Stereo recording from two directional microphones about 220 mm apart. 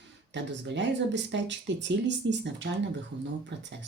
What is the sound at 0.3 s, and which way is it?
Speech, 55° right (ahead or behind).